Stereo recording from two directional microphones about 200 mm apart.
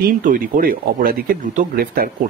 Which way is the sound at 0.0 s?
45° right (ahead or behind).